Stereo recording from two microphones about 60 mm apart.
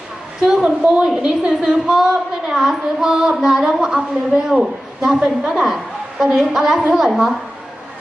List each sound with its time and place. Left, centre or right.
0.4 s a woman's voice: centre